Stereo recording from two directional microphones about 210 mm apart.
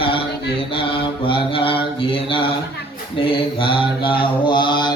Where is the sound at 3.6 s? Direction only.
25° left (ahead or behind).